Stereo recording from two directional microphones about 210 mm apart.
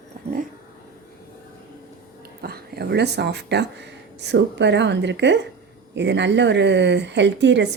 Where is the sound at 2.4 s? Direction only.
50° right (ahead or behind).